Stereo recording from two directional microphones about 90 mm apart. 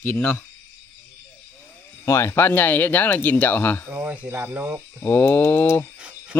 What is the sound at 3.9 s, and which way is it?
Speech, 20° right (ahead or behind).